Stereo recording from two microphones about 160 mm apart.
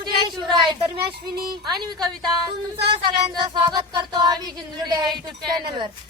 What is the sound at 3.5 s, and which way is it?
Music, 25° right (ahead or behind).